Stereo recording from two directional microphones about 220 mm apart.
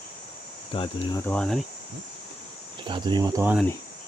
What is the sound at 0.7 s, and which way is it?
Speech, 25° left (ahead or behind).